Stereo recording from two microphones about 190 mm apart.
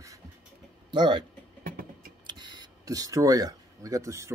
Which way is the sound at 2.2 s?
25° right (ahead or behind).